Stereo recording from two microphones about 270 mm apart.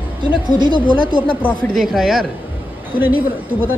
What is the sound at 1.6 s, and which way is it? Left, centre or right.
A woman's voice, centre.